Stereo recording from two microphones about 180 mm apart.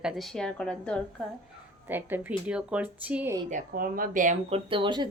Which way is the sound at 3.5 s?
50° right (ahead or behind).